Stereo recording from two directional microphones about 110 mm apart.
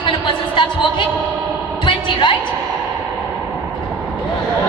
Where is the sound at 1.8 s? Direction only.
50° left (ahead or behind).